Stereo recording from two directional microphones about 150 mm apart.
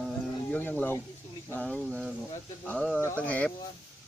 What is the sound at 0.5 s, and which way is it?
Speech, 10° left (ahead or behind).